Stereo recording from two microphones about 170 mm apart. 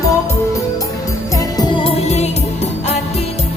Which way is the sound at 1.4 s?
25° left (ahead or behind).